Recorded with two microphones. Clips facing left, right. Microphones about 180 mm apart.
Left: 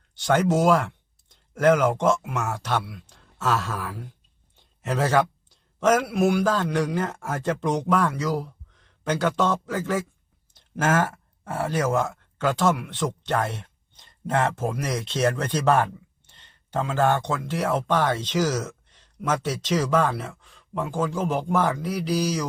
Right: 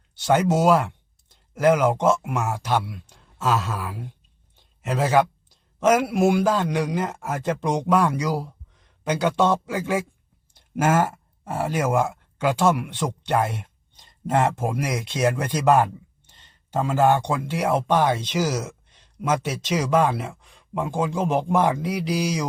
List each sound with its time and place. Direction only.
0.2 s speech: 10° right (ahead or behind)
6.1 s a man's voice: 25° right (ahead or behind)
6.4 s speech: 10° right (ahead or behind)